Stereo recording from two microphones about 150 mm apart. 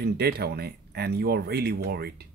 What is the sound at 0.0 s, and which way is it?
Speech, 90° right.